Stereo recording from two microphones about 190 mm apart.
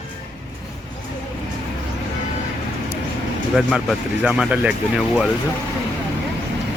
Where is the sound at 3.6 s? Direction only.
Centre (ahead or behind).